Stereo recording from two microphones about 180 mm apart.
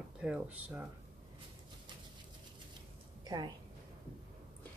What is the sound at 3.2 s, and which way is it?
Speech, 25° right (ahead or behind).